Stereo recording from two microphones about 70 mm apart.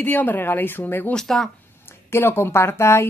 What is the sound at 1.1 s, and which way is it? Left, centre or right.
Speech, centre.